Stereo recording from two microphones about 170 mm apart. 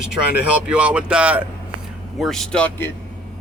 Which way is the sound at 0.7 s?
5° right (ahead or behind).